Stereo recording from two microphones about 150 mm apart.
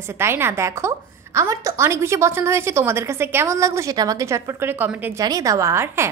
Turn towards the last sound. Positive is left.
turn(degrees=-15)  # may be behind; listen again after turning